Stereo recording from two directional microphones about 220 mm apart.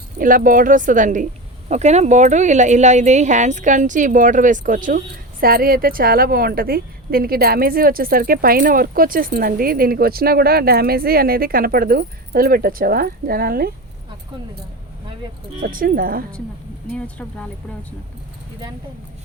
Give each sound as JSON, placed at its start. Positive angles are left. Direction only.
{"t": 0.2, "sound": "a woman's voice", "side_deg": -40}
{"t": 15.6, "sound": "a woman's voice", "side_deg": -40}
{"t": 16.9, "sound": "speech", "side_deg": 5}